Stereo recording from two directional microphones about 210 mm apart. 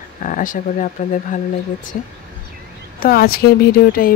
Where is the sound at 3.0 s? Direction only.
45° left (ahead or behind).